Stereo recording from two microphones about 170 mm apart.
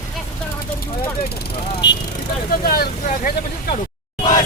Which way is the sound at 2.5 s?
60° left (ahead or behind).